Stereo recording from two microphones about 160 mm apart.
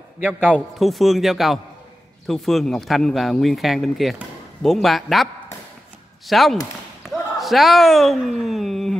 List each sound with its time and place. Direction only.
0.2 s speech: 10° right (ahead or behind)